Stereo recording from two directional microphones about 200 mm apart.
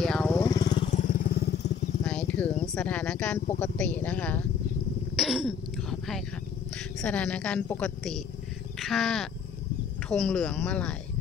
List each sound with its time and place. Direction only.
0.0 s vehicle: 5° left (ahead or behind); by 0.8 s 20° left (ahead or behind)
0.8 s vehicle: 40° left (ahead or behind); by 1.7 s 55° left (ahead or behind)
2.0 s a sound: 5° left (ahead or behind)
2.7 s speech: 5° left (ahead or behind)
5.1 s throat clearing: centre (ahead or behind)
7.0 s a woman's voice: 5° left (ahead or behind)